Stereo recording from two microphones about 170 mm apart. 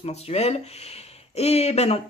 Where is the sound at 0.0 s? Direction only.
35° left (ahead or behind).